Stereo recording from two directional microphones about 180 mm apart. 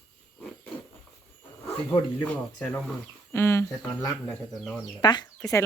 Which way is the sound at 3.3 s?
15° left (ahead or behind).